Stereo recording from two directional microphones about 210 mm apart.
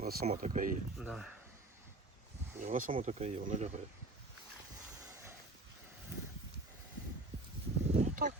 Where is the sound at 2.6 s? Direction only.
40° right (ahead or behind).